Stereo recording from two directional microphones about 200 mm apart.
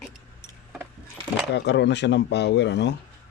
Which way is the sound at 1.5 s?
60° left (ahead or behind).